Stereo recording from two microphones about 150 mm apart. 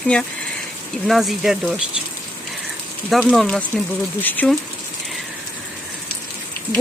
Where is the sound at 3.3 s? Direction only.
5° left (ahead or behind).